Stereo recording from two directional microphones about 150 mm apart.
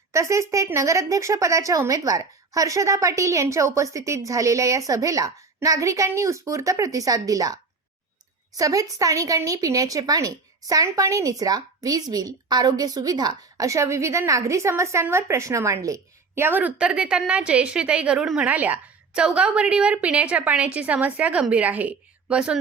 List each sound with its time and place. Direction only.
0.1 s speech: 20° right (ahead or behind)